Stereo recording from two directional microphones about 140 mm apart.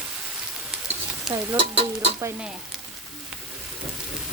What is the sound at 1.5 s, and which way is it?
Speech, 45° right (ahead or behind).